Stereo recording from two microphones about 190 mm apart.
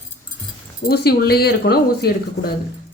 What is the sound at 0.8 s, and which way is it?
Speech, 55° left (ahead or behind).